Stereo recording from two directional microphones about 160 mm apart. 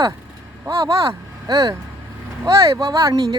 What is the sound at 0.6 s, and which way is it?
Speech, 20° right (ahead or behind).